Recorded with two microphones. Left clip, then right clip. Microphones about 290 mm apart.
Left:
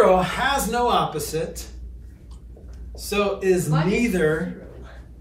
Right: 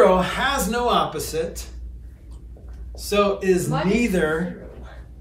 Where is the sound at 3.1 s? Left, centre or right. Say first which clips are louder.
Right 2 dB; centre.